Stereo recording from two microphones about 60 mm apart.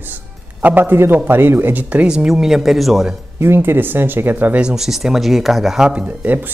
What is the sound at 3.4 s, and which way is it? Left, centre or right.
Speech, right.